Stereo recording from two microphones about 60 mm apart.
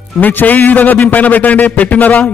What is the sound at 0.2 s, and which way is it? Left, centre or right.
A man's voice, left.